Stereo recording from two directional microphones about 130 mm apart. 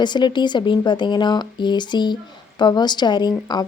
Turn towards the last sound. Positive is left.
turn(degrees=35)  # may be behind; listen again after turning